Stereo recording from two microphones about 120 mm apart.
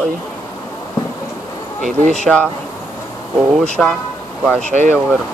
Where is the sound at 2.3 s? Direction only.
5° left (ahead or behind).